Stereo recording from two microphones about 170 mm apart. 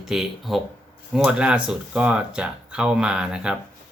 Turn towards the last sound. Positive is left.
turn(degrees=-5)  # may be behind; listen again after turning